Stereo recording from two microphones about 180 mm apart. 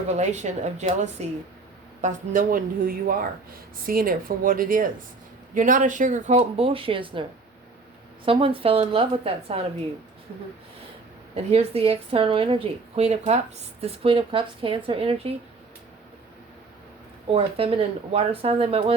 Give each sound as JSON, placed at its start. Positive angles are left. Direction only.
{"t": 0.1, "sound": "speech", "side_deg": -40}
{"t": 11.5, "sound": "speech", "side_deg": -35}
{"t": 17.3, "sound": "speech", "side_deg": -30}